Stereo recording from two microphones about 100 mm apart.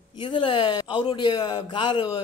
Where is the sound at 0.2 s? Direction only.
55° left (ahead or behind).